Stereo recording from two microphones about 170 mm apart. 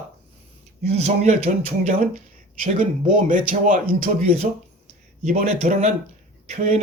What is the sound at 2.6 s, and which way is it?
A man's voice, 50° right (ahead or behind).